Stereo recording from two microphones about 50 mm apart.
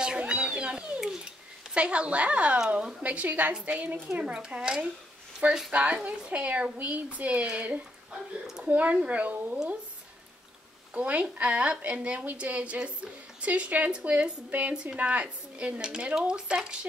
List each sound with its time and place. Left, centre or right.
0.2 s a sound: centre
1.7 s a woman's voice: right
5.7 s a woman's voice: right
11.0 s a woman's voice: right